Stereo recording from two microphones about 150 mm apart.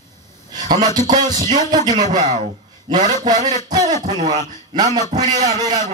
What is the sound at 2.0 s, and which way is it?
Speech, 50° right (ahead or behind).